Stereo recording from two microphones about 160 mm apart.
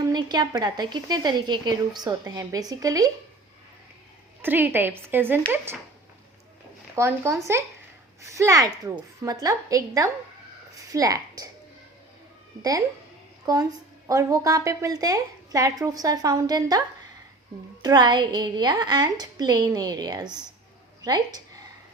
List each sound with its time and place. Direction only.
0.0 s a woman's voice: 25° right (ahead or behind)
4.4 s a woman's voice: 10° right (ahead or behind)
6.9 s a woman's voice: 15° right (ahead or behind)
13.4 s a woman's voice: 25° right (ahead or behind)
17.8 s a woman's voice: 25° right (ahead or behind)